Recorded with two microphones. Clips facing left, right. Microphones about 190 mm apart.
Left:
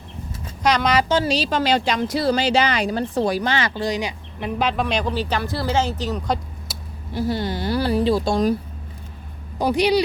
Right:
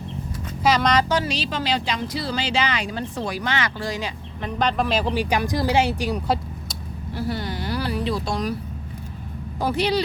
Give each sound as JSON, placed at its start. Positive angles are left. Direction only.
{"t": 0.6, "sound": "speech", "side_deg": 0}
{"t": 1.0, "sound": "speech", "side_deg": 30}
{"t": 1.5, "sound": "speech", "side_deg": 45}
{"t": 3.8, "sound": "speech", "side_deg": 20}
{"t": 5.0, "sound": "speech", "side_deg": -10}
{"t": 7.1, "sound": "speech", "side_deg": 20}
{"t": 9.6, "sound": "speech", "side_deg": 15}